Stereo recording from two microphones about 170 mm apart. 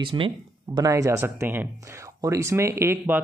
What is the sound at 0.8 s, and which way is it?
Speech, 20° right (ahead or behind).